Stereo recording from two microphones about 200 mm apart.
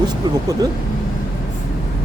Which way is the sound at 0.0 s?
20° right (ahead or behind).